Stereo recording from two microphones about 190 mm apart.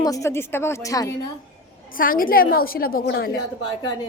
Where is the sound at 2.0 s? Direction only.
50° left (ahead or behind).